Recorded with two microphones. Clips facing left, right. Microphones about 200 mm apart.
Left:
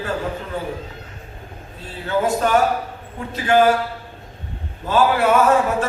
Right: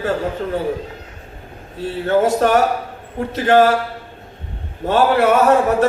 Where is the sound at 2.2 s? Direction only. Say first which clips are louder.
Left 1 dB; 65° right (ahead or behind).